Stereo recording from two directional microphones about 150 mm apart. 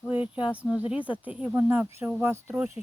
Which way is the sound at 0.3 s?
10° right (ahead or behind).